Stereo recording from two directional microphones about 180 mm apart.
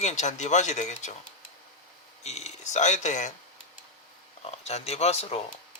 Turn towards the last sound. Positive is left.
turn(degrees=35)  # may be behind; listen again after turning